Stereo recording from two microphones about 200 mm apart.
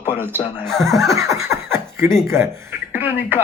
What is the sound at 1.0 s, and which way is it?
Speech, 15° right (ahead or behind).